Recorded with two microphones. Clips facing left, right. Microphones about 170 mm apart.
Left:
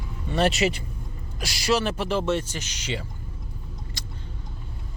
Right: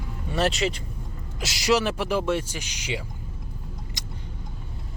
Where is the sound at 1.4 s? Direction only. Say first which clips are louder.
Right 1 dB; 20° right (ahead or behind).